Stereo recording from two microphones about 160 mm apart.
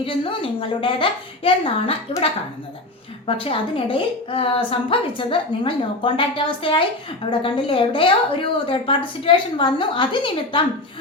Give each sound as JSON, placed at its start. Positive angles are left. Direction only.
{"t": 0.0, "sound": "a woman's voice", "side_deg": 35}
{"t": 3.2, "sound": "a woman's voice", "side_deg": 35}